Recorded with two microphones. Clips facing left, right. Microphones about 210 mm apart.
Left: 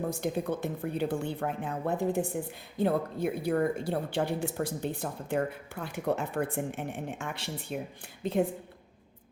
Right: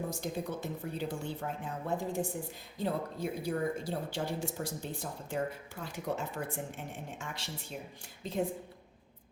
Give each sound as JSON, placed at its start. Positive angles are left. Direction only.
{"t": 0.1, "sound": "speech", "side_deg": 60}